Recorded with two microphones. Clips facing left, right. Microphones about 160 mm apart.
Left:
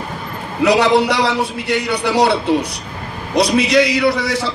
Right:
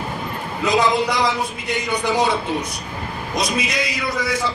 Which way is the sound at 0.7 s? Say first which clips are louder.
Left 5 dB; 75° left (ahead or behind).